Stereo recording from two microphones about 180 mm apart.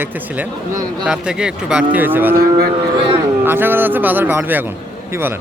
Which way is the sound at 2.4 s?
65° right (ahead or behind).